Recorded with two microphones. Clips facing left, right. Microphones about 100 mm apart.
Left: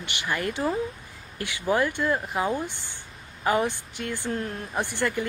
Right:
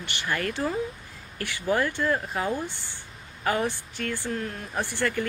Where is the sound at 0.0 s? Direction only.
15° left (ahead or behind).